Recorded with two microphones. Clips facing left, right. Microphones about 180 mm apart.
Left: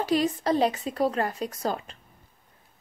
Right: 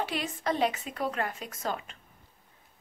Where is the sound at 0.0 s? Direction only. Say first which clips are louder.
Left 8 dB; 40° left (ahead or behind).